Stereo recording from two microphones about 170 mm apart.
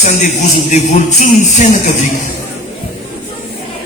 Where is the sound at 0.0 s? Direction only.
45° left (ahead or behind).